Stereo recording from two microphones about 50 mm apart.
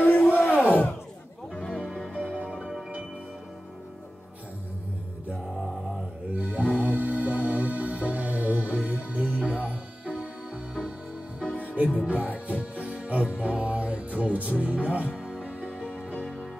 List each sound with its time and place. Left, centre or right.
0.3 s crowd: left
0.7 s a sound: left
1.5 s music: centre
1.9 s music: centre
6.3 s music: right
11.4 s music: left
12.0 s music: right
15.2 s music: centre